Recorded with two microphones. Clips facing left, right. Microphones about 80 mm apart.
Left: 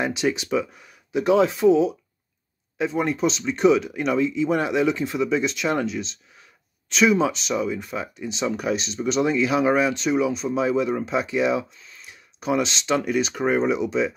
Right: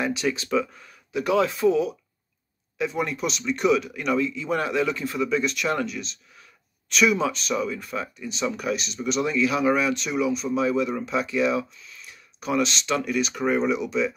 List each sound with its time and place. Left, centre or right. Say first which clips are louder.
0.0 s speech: left 2 dB; left